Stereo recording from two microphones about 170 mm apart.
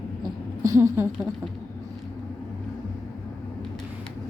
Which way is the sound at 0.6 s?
20° right (ahead or behind).